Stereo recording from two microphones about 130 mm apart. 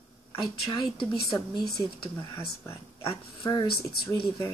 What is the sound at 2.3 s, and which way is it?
Speech, 20° left (ahead or behind).